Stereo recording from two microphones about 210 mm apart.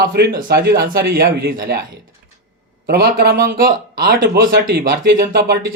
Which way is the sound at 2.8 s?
50° right (ahead or behind).